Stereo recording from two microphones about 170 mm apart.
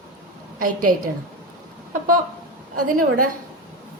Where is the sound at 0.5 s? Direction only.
55° right (ahead or behind).